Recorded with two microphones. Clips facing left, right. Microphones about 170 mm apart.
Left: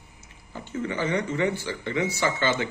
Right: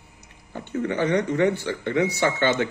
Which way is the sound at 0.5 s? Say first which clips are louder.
Right 4 dB; 60° right (ahead or behind).